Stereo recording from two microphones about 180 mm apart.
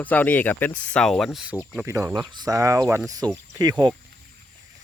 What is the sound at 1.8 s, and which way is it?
Speech, 15° right (ahead or behind).